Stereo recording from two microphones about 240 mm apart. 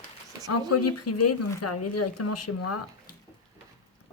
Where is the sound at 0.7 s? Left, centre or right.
Left.